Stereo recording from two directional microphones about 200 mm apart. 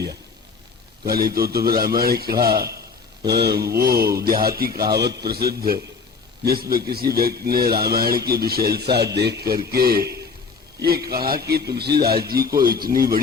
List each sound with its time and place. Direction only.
1.0 s a man's voice: 50° right (ahead or behind)